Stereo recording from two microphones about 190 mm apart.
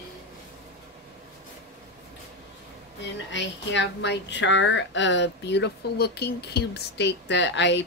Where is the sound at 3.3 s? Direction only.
70° left (ahead or behind).